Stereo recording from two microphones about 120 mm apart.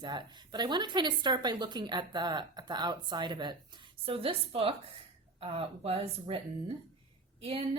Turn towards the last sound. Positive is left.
turn(degrees=-45)  # may be behind; listen again after turning